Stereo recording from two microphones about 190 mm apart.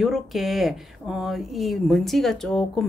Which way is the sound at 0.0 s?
Centre (ahead or behind).